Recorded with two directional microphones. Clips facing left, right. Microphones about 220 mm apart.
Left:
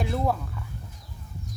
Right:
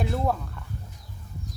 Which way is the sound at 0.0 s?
Centre (ahead or behind).